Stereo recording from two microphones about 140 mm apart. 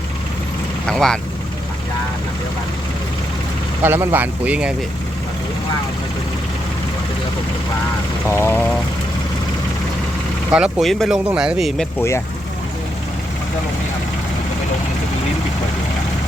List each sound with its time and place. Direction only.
0.9 s speech: 5° left (ahead or behind)
3.8 s speech: 15° right (ahead or behind)
8.3 s speech: 20° left (ahead or behind)
10.5 s speech: 5° right (ahead or behind)
11.9 s speech: 20° left (ahead or behind)